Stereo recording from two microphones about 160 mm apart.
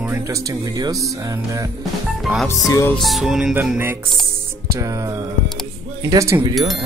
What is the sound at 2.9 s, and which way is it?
Speech, centre (ahead or behind).